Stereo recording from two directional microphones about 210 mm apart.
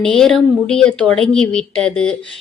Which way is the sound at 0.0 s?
5° left (ahead or behind).